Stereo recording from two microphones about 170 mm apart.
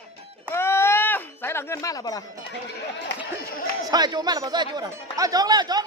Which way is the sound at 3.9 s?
25° right (ahead or behind).